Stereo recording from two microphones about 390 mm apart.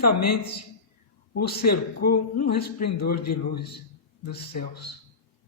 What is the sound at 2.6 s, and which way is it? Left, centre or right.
Speech, left.